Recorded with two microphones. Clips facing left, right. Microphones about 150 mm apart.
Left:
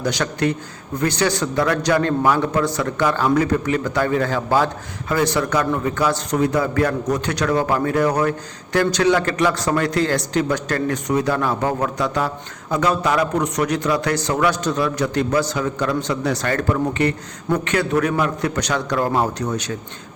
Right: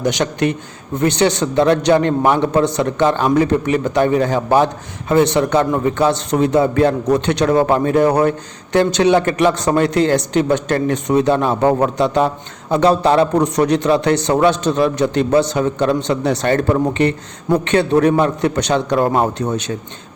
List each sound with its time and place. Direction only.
0.0 s a man's voice: 20° right (ahead or behind)